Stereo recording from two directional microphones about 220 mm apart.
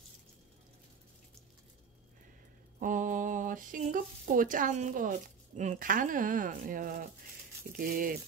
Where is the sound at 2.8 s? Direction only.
35° right (ahead or behind).